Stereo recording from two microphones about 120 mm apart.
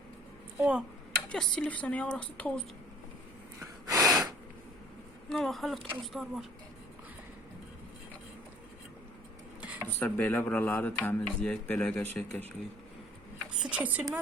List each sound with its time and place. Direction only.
0.6 s a woman's voice: 5° right (ahead or behind)
1.3 s speech: 10° left (ahead or behind)
3.6 s snort: 30° right (ahead or behind)
5.3 s speech: centre (ahead or behind)
9.6 s a sound: 10° right (ahead or behind)
9.8 s speech: 15° left (ahead or behind)
13.6 s a woman's voice: 10° right (ahead or behind)